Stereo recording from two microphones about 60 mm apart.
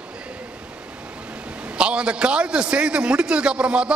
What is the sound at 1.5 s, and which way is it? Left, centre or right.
A man's voice, centre.